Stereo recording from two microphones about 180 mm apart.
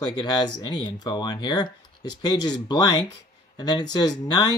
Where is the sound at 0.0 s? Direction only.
25° left (ahead or behind).